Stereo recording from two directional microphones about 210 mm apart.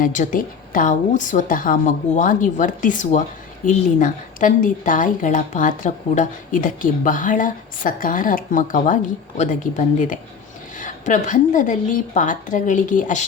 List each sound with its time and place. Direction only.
0.0 s a woman's voice: 35° left (ahead or behind)